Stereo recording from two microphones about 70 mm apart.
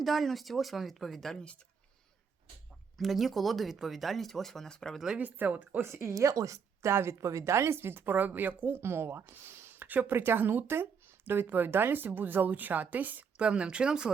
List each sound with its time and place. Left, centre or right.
0.0 s speech: centre
3.0 s speech: centre
4.9 s speech: centre
5.2 s speech: right
5.8 s speech: right
6.1 s speech: right; by 14.1 s centre